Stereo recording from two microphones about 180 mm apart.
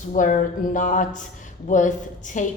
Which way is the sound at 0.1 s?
45° left (ahead or behind).